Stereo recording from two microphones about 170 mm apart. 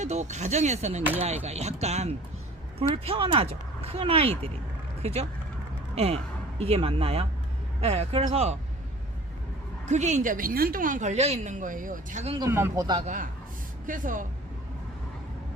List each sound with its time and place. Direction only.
0.0 s speech: 40° right (ahead or behind)
5.9 s speech: 35° right (ahead or behind)
9.8 s speech: 45° right (ahead or behind)
12.5 s speech: 15° right (ahead or behind)
13.8 s speech: 50° right (ahead or behind)